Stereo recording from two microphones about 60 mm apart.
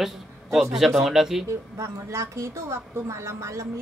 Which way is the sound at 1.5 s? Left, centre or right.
Right.